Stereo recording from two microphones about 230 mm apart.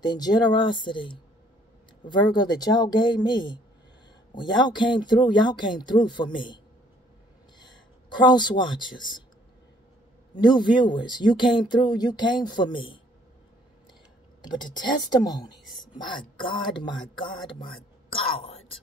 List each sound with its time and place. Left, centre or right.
0.0 s speech: centre
8.2 s speech: centre
10.3 s speech: centre
14.4 s speech: centre